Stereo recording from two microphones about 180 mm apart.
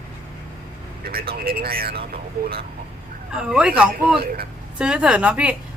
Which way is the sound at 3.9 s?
55° right (ahead or behind).